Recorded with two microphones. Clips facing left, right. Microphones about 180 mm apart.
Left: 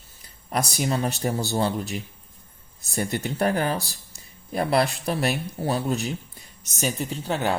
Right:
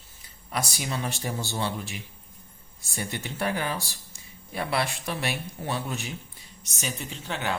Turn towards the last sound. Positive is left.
turn(degrees=40)  # may be behind; listen again after turning